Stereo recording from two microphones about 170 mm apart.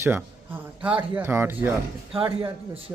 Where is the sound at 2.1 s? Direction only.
30° right (ahead or behind).